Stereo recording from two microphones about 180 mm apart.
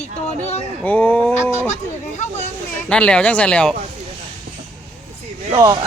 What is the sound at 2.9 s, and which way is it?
Speech, 5° left (ahead or behind).